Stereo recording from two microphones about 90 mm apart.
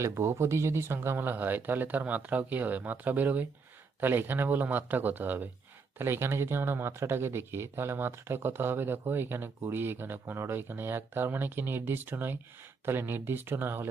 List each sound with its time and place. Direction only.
0.0 s speech: 30° right (ahead or behind)